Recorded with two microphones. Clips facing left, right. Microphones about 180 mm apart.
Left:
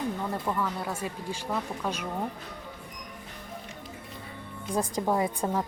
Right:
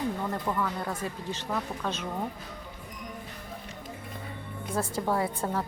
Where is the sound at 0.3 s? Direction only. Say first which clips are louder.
Even; 10° left (ahead or behind).